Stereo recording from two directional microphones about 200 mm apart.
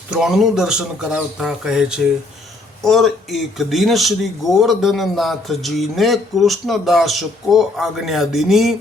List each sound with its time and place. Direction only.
0.1 s speech: centre (ahead or behind)